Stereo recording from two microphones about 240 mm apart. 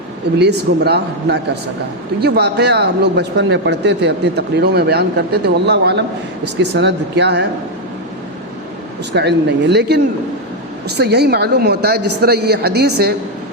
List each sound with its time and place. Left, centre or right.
0.3 s speech: right
9.1 s speech: right